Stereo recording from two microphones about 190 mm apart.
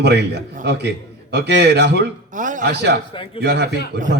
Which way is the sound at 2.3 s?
45° right (ahead or behind).